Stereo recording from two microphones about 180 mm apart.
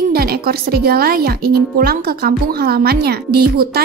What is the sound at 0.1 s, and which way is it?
Speech, 60° right (ahead or behind).